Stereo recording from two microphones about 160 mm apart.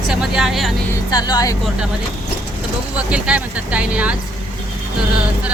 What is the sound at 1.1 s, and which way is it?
Speech, 25° left (ahead or behind).